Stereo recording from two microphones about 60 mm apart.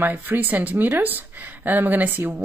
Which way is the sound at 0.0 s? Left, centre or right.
Right.